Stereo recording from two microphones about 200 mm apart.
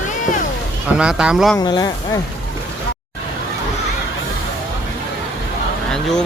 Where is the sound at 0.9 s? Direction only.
5° right (ahead or behind).